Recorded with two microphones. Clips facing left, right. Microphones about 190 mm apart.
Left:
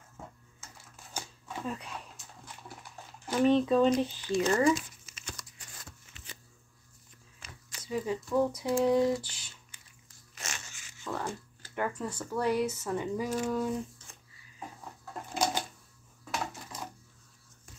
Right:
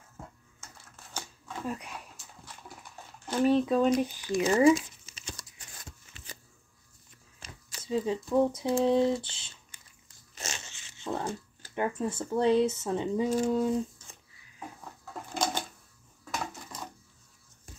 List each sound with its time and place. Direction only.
1.7 s speech: 10° right (ahead or behind)
3.4 s speech: 5° right (ahead or behind)
5.0 s a sound: 30° right (ahead or behind)
7.3 s shuffling cards: 30° right (ahead or behind)
8.5 s speech: 25° right (ahead or behind)
15.3 s a sound: 10° left (ahead or behind)
16.3 s dishes: 5° left (ahead or behind)